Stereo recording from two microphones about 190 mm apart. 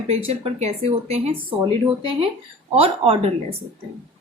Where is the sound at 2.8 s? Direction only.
30° right (ahead or behind).